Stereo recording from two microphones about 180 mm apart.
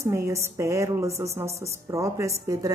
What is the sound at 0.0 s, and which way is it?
A woman's voice, 15° right (ahead or behind).